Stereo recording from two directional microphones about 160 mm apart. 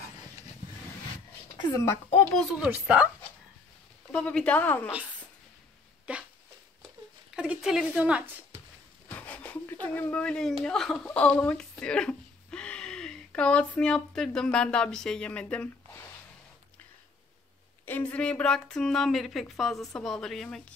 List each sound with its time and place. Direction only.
1.7 s speech: 15° left (ahead or behind)
2.5 s speech: 10° right (ahead or behind)
4.1 s speech: 5° left (ahead or behind)
6.1 s a sound: 5° right (ahead or behind)
7.3 s a woman's voice: 5° right (ahead or behind)
9.1 s a sound: 10° left (ahead or behind)
9.9 s speech: 10° left (ahead or behind)
17.8 s speech: 10° left (ahead or behind)